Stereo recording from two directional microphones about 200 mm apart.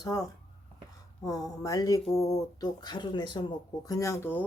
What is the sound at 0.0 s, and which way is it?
Speech, 15° left (ahead or behind).